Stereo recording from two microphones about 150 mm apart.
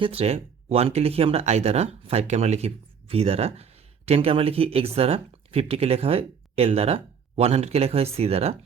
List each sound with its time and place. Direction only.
0.0 s speech: 40° right (ahead or behind)